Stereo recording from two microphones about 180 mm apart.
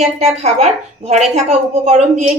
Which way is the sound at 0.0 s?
35° right (ahead or behind).